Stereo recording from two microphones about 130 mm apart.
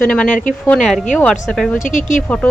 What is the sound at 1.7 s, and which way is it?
Speech, 75° left (ahead or behind).